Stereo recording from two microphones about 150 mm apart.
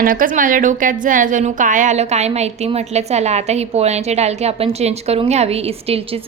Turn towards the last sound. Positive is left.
turn(degrees=-40)  # may be behind; listen again after turning